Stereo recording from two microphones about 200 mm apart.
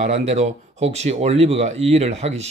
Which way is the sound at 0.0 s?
35° right (ahead or behind).